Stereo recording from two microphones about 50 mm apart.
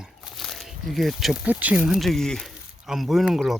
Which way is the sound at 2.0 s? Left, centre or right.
Centre.